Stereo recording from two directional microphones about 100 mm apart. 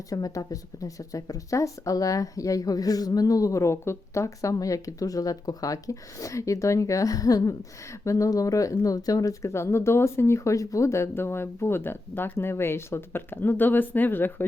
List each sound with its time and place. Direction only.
0.1 s speech: 35° left (ahead or behind); by 14.4 s 20° left (ahead or behind)